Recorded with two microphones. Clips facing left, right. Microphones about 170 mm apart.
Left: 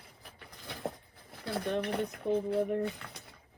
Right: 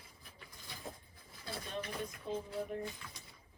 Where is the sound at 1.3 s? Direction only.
60° left (ahead or behind).